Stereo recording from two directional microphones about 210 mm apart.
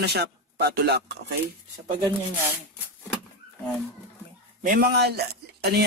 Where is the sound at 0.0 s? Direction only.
50° right (ahead or behind).